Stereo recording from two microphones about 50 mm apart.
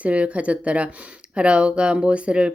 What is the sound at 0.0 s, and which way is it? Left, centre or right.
Speech, right.